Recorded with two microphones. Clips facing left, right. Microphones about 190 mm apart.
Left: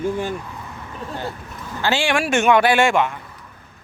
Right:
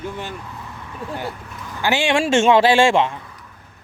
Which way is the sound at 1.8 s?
20° right (ahead or behind).